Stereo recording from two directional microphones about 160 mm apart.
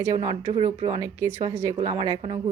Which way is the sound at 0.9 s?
20° right (ahead or behind).